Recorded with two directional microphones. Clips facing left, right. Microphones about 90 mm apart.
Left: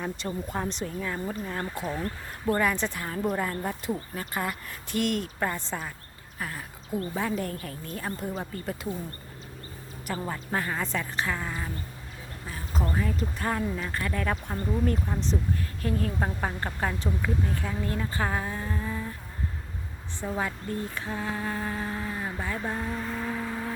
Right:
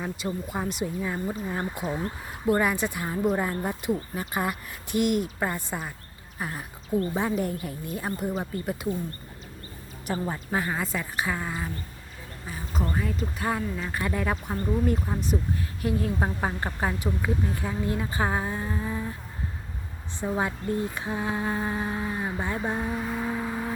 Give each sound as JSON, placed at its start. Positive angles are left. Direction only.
{"t": 0.0, "sound": "speech", "side_deg": -5}
{"t": 10.2, "sound": "speech", "side_deg": -15}
{"t": 20.2, "sound": "speech", "side_deg": -20}